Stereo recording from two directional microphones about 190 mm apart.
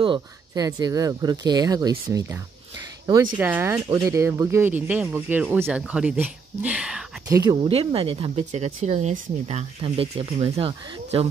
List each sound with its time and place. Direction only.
0.0 s speech: 25° right (ahead or behind); by 7.1 s 5° right (ahead or behind)
7.2 s speech: 15° right (ahead or behind)
7.6 s speech: 30° right (ahead or behind)